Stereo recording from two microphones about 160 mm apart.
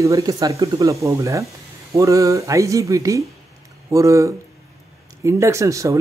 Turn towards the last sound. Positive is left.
turn(degrees=-20)  # may be behind; listen again after turning